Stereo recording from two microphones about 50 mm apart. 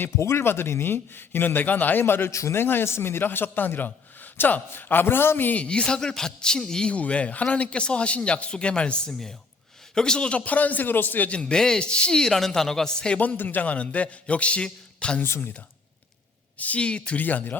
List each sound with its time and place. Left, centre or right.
0.2 s speech: left
2.3 s a man's voice: left
2.6 s speech: left
5.5 s a man's voice: left
6.9 s a man's voice: left
11.3 s a man's voice: left
13.1 s a man's voice: left
16.6 s a man's voice: left
17.2 s a man's voice: left